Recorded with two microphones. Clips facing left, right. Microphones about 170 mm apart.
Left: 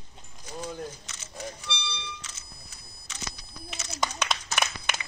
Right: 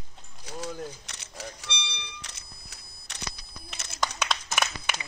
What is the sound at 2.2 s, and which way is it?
Vehicle, 65° right (ahead or behind).